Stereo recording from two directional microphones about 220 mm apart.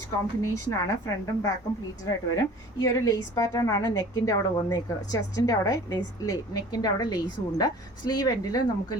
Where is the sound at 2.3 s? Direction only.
15° left (ahead or behind).